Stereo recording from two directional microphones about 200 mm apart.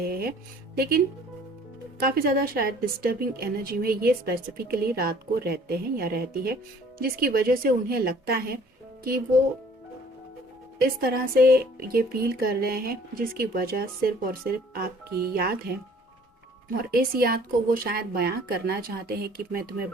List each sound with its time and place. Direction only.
0.0 s speech: 50° right (ahead or behind)
10.8 s speech: 45° right (ahead or behind)